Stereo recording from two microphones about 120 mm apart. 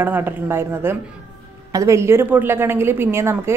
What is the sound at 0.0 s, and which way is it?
A woman's voice, 15° right (ahead or behind).